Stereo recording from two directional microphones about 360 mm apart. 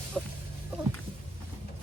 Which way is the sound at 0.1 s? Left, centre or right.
Centre.